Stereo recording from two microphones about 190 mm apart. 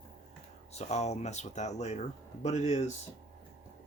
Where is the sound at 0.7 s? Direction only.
35° left (ahead or behind).